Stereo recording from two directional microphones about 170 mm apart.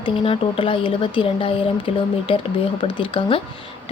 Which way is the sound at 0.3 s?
30° left (ahead or behind).